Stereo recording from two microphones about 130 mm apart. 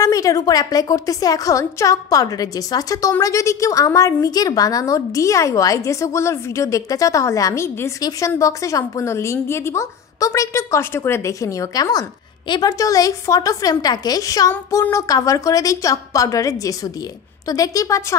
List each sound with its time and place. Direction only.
0.0 s a woman's voice: 25° left (ahead or behind)